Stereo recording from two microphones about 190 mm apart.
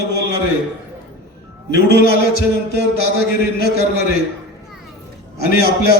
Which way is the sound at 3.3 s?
55° left (ahead or behind).